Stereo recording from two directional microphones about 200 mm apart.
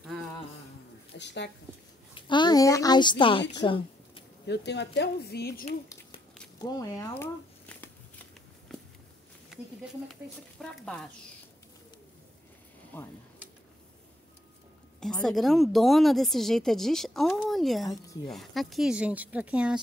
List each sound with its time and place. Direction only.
0.0 s a sound: centre (ahead or behind)
1.1 s a woman's voice: 60° left (ahead or behind)
2.1 s a woman's voice: 25° left (ahead or behind)
4.5 s speech: 60° left (ahead or behind)
6.6 s speech: 15° left (ahead or behind)
8.7 s walk: centre (ahead or behind)
10.6 s speech: 5° left (ahead or behind)
12.9 s speech: 10° left (ahead or behind)
15.2 s speech: centre (ahead or behind)